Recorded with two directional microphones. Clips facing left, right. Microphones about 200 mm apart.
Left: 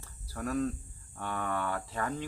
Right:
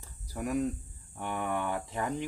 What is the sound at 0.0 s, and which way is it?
Cricket, 15° right (ahead or behind).